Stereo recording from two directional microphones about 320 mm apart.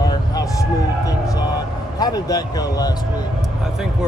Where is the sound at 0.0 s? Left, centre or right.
Centre.